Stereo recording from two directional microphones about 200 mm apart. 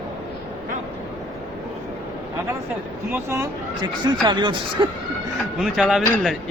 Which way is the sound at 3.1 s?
10° right (ahead or behind).